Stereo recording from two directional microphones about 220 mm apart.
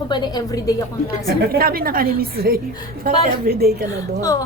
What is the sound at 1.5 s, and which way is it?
A woman's voice, 45° right (ahead or behind).